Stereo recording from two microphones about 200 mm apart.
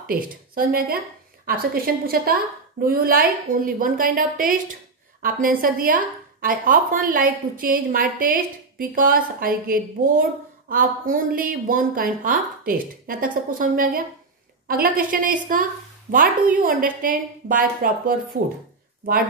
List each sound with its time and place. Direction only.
0.0 s a woman's voice: 45° right (ahead or behind)